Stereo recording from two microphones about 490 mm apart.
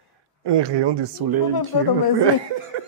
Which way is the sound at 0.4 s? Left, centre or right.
Right.